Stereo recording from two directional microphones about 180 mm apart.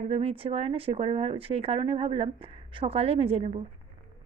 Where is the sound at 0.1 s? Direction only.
30° right (ahead or behind).